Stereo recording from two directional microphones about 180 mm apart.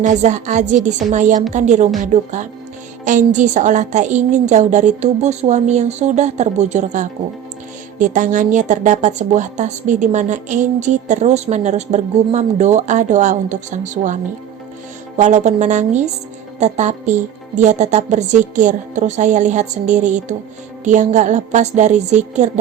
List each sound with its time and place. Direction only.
0.0 s a woman's voice: 40° right (ahead or behind)
15.2 s a woman's voice: 40° right (ahead or behind)